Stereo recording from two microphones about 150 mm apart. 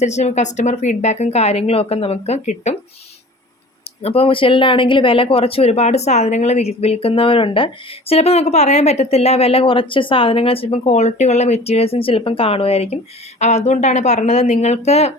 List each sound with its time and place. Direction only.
0.0 s speech: 50° left (ahead or behind)
4.0 s speech: 40° left (ahead or behind)